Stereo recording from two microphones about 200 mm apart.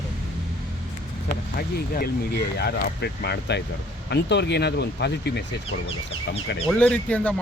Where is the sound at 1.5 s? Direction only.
50° left (ahead or behind).